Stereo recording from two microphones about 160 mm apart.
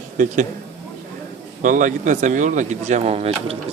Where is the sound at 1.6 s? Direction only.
55° right (ahead or behind).